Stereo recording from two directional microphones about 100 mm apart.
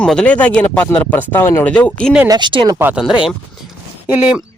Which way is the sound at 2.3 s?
50° right (ahead or behind).